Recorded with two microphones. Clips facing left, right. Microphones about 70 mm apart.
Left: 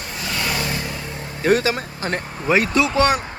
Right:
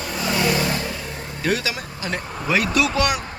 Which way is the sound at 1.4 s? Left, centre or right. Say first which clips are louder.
Left 6 dB; left.